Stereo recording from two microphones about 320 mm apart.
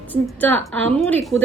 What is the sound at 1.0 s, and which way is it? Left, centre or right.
Speech, centre.